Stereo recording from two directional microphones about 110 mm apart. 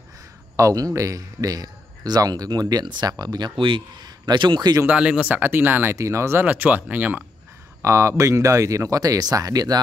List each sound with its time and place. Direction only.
0.6 s speech: 30° right (ahead or behind)
4.8 s speech: 10° right (ahead or behind)
7.8 s speech: 25° right (ahead or behind)